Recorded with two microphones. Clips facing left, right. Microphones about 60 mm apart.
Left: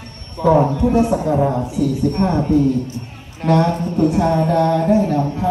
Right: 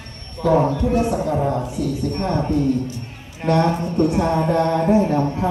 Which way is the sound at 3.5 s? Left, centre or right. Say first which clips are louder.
Left 2 dB; centre.